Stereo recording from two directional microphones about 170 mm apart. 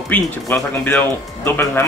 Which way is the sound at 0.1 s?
10° left (ahead or behind).